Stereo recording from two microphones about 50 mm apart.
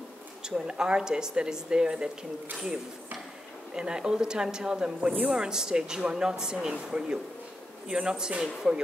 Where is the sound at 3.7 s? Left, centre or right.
Centre.